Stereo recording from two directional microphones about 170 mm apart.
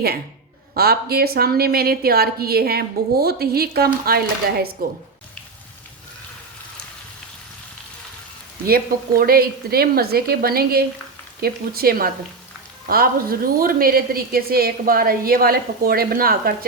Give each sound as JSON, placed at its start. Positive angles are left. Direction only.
{"t": 0.7, "sound": "a woman's voice", "side_deg": -65}
{"t": 8.6, "sound": "a woman's voice", "side_deg": -60}